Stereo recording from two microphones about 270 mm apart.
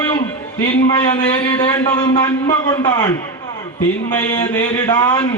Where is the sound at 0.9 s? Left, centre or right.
Centre.